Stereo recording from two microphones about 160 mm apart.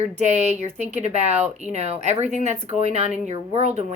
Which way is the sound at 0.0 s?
45° right (ahead or behind).